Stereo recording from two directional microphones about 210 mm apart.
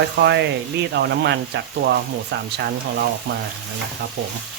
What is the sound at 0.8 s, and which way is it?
Speech, 50° right (ahead or behind).